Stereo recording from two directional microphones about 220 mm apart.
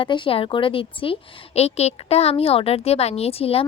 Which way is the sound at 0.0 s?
25° left (ahead or behind).